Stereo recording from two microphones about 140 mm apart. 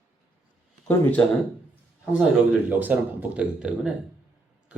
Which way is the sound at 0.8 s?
15° left (ahead or behind).